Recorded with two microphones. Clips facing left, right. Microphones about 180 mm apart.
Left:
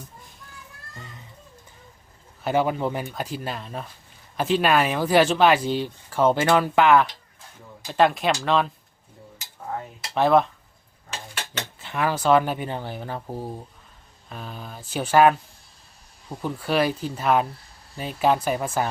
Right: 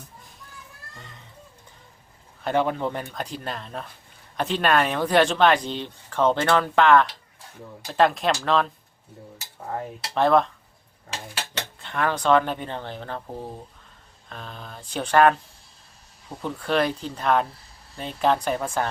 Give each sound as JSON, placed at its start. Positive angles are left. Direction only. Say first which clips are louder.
{"t": 0.9, "sound": "a sound", "louder": "left 4 dB", "side_deg": 0}
{"t": 2.4, "sound": "speech", "louder": "left 1 dB", "side_deg": 5}
{"t": 10.2, "sound": "speech", "louder": "left 1 dB", "side_deg": 5}
{"t": 11.8, "sound": "speech", "louder": "left 1 dB", "side_deg": 5}
{"t": 16.4, "sound": "speech", "louder": "left 1 dB", "side_deg": 5}